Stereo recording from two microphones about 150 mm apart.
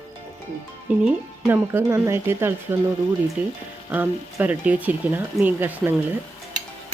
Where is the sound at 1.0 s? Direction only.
15° right (ahead or behind).